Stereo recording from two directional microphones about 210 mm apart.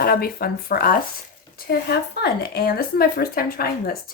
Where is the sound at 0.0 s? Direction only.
45° left (ahead or behind).